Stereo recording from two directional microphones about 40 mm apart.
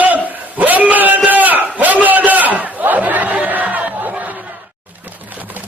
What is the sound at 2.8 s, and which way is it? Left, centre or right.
Chatter, right.